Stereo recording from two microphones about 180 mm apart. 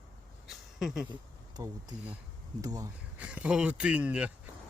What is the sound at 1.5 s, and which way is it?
Speech, 20° right (ahead or behind).